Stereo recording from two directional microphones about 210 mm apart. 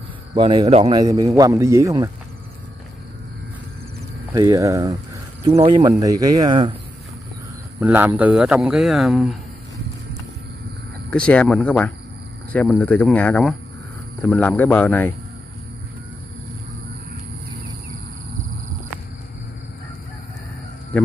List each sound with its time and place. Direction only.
0.3 s speech: 20° right (ahead or behind)
0.9 s a man's voice: 20° right (ahead or behind)
4.3 s a man's voice: 15° right (ahead or behind)
7.8 s a man's voice: 10° right (ahead or behind)
11.1 s speech: 5° left (ahead or behind)